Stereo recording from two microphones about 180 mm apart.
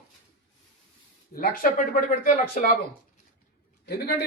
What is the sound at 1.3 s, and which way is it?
Speech, 55° left (ahead or behind).